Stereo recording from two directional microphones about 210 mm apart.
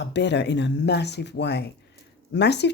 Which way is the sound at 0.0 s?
55° left (ahead or behind).